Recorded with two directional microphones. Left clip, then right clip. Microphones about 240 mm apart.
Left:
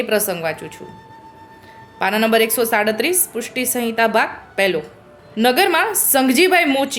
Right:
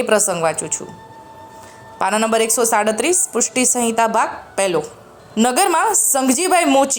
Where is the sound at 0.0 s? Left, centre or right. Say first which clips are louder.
Right 3 dB; centre.